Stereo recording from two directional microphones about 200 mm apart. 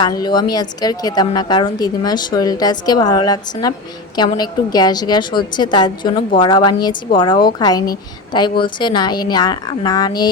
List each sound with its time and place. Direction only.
0.0 s a woman's voice: 20° left (ahead or behind)